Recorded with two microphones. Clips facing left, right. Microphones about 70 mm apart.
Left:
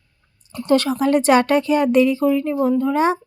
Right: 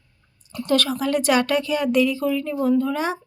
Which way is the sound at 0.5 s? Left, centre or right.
Left.